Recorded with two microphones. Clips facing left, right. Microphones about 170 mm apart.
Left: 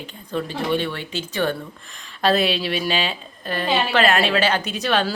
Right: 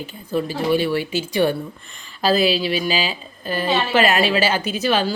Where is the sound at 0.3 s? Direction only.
5° right (ahead or behind).